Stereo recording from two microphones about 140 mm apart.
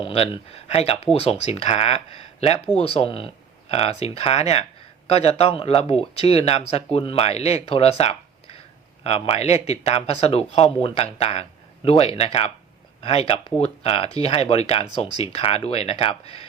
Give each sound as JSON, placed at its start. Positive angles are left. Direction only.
{"t": 0.0, "sound": "speech", "side_deg": 45}